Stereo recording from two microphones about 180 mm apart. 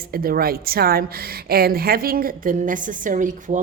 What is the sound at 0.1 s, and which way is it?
A woman's voice, 55° right (ahead or behind).